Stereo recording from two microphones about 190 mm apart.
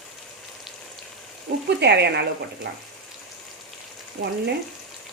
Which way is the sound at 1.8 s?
60° right (ahead or behind).